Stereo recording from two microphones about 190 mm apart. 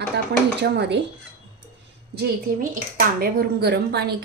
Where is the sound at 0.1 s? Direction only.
65° right (ahead or behind).